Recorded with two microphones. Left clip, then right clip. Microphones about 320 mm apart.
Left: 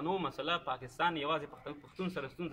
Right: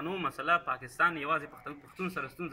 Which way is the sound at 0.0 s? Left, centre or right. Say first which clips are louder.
Right 2 dB; centre.